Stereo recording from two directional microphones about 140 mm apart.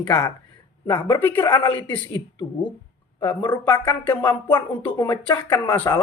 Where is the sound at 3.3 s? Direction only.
30° left (ahead or behind).